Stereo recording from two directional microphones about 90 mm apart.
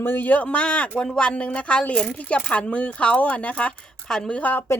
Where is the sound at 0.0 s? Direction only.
20° left (ahead or behind).